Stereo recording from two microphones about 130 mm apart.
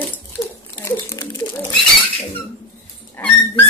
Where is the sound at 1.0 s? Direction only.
25° left (ahead or behind).